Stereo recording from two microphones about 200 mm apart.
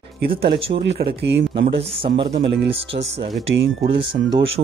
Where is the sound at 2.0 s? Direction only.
25° right (ahead or behind).